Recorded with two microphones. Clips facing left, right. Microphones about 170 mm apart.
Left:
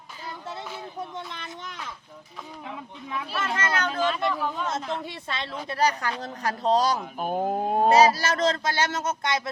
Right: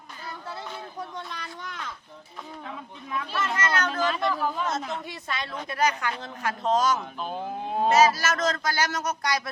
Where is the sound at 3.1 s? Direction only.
10° left (ahead or behind).